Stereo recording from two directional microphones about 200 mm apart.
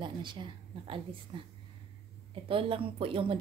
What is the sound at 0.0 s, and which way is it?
A woman's voice, 25° right (ahead or behind).